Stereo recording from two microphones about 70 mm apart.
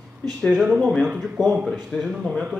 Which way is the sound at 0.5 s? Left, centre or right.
Centre.